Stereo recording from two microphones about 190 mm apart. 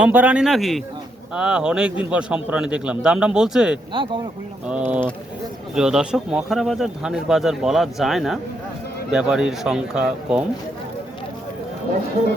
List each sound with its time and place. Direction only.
0.0 s speech: 5° right (ahead or behind)
3.9 s speech: 25° right (ahead or behind)
5.7 s speech: 5° right (ahead or behind)